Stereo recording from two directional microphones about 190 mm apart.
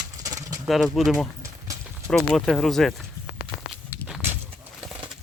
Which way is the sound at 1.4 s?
15° right (ahead or behind).